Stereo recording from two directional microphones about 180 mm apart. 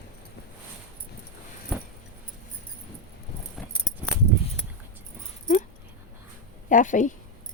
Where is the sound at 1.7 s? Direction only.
5° left (ahead or behind).